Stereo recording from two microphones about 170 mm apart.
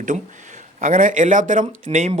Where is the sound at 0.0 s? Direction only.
50° right (ahead or behind).